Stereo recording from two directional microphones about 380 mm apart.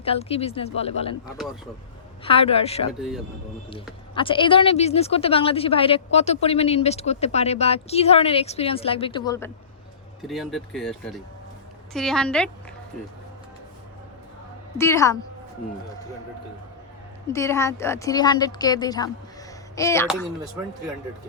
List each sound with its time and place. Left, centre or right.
0.0 s a woman's voice: centre
2.2 s a woman's voice: centre
14.8 s a woman's voice: centre
17.2 s a woman's voice: centre